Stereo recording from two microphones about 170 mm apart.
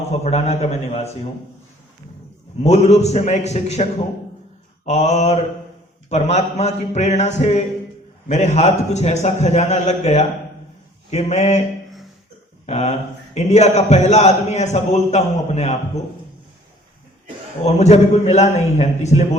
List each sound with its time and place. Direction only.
0.1 s a man's voice: 40° left (ahead or behind)
2.6 s a man's voice: 40° left (ahead or behind)
12.6 s a man's voice: 40° left (ahead or behind)
17.7 s a man's voice: 40° left (ahead or behind)